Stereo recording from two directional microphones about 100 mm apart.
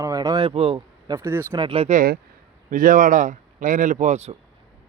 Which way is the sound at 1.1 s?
25° right (ahead or behind).